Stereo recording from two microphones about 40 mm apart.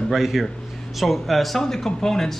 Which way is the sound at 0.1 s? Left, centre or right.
Centre.